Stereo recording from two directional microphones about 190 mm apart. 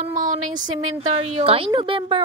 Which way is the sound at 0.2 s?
40° right (ahead or behind).